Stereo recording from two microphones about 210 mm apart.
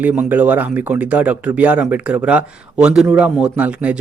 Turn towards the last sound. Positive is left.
turn(degrees=-5)  # may be behind; listen again after turning